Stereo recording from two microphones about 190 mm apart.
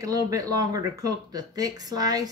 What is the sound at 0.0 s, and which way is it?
Speech, 20° right (ahead or behind).